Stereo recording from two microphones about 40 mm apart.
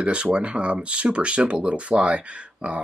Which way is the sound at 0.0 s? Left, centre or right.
Right.